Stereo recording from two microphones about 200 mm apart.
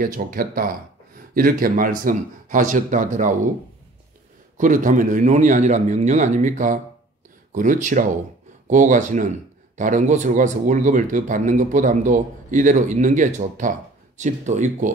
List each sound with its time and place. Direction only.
0.0 s speech: 45° right (ahead or behind)
4.6 s speech: 40° right (ahead or behind)